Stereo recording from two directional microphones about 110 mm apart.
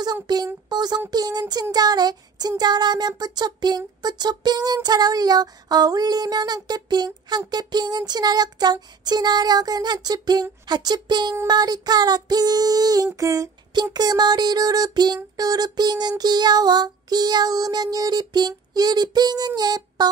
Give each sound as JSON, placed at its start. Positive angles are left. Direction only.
{"t": 0.0, "sound": "speech", "side_deg": -40}
{"t": 1.1, "sound": "child singing", "side_deg": -35}